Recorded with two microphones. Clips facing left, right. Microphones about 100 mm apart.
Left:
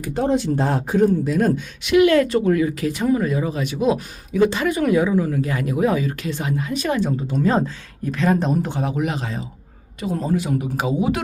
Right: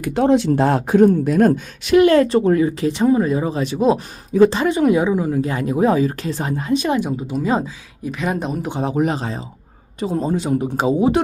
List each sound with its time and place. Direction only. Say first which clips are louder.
0.0 s speech: right 5 dB; 80° right; by 6.7 s 35° right (ahead or behind)
6.7 s speech: right 3 dB; 20° right (ahead or behind)
8.8 s speech: right 4 dB; 35° right (ahead or behind)